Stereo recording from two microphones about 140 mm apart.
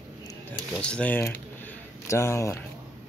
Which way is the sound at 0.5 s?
10° left (ahead or behind).